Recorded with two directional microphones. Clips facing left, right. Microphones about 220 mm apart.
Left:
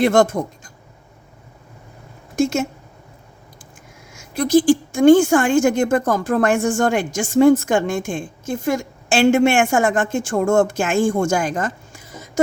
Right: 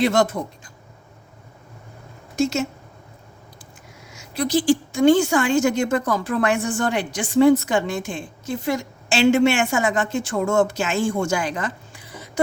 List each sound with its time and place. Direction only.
0.0 s a woman's voice: 50° left (ahead or behind)
2.3 s a sound: 50° left (ahead or behind)
4.1 s a woman's voice: 50° left (ahead or behind)